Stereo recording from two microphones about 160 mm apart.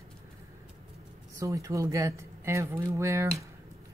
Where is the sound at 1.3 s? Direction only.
20° right (ahead or behind).